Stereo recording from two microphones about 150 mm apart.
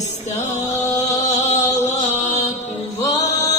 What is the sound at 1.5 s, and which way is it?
Chant, 50° left (ahead or behind).